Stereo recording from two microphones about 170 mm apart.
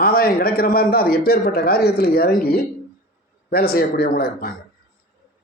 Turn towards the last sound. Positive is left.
turn(degrees=65)  # may be behind; listen again after turning